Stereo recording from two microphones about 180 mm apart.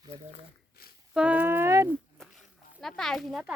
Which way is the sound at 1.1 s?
5° right (ahead or behind).